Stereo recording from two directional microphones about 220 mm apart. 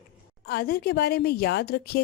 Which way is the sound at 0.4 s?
45° left (ahead or behind).